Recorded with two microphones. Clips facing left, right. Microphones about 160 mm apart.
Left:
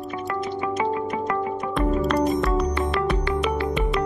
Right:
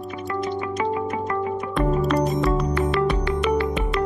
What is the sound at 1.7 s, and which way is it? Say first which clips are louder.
Music: right 1 dB; centre (ahead or behind).